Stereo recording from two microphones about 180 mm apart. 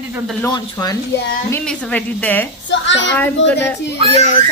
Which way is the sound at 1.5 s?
5° left (ahead or behind).